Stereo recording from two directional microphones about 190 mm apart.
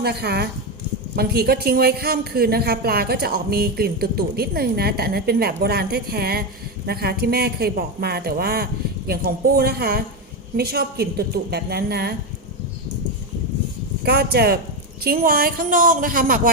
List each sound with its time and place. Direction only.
0.0 s speech: 55° right (ahead or behind)
14.0 s a woman's voice: 55° right (ahead or behind)